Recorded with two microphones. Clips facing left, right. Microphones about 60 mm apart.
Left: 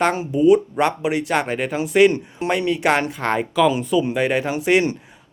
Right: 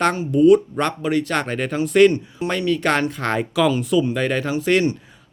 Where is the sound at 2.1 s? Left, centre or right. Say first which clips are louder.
Left 2 dB; left.